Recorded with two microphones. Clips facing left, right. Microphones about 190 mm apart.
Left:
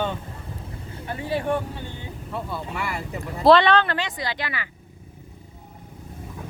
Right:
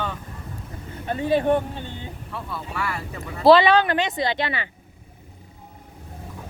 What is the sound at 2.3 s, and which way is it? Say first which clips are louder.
Speech: left 2 dB; 20° left (ahead or behind).